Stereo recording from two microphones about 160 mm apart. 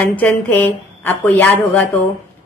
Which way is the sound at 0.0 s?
10° left (ahead or behind).